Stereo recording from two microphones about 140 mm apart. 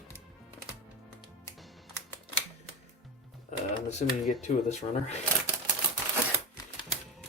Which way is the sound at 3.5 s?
55° left (ahead or behind).